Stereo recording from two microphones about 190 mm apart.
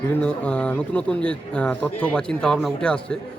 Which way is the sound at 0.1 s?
5° left (ahead or behind).